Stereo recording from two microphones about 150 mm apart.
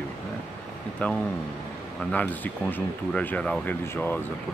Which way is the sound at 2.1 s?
10° left (ahead or behind).